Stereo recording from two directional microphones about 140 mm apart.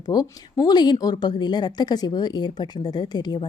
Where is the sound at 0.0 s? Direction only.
30° left (ahead or behind).